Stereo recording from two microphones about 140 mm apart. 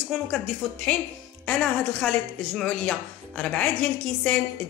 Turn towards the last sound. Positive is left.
turn(degrees=10)  # may be behind; listen again after turning